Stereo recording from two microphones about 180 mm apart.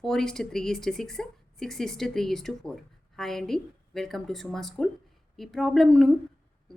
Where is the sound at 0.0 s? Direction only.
Centre (ahead or behind).